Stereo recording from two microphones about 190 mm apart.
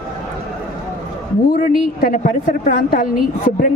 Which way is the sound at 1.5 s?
45° left (ahead or behind).